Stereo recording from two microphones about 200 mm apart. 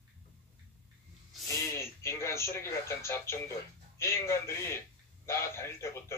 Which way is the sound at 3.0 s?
15° left (ahead or behind).